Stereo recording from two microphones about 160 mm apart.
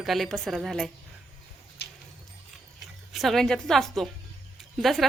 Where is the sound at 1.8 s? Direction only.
90° left.